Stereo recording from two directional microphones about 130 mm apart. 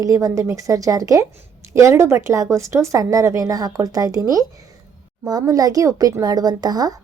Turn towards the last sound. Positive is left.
turn(degrees=-30)  # may be behind; listen again after turning